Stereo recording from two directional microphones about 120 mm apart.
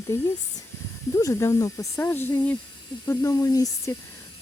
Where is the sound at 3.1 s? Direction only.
30° left (ahead or behind).